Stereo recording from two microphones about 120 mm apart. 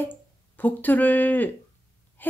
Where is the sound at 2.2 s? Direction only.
15° left (ahead or behind).